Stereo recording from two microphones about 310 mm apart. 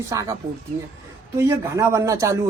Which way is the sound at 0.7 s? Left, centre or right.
Right.